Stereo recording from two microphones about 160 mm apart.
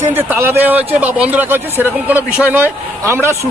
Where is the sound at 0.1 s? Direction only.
15° right (ahead or behind).